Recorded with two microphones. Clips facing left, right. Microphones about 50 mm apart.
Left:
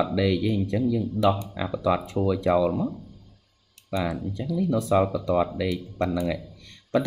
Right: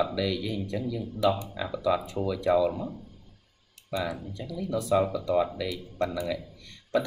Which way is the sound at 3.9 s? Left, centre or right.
Left.